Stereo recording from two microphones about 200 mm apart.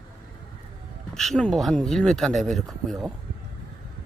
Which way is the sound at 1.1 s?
Centre (ahead or behind).